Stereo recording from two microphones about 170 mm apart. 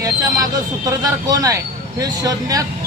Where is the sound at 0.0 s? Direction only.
20° right (ahead or behind).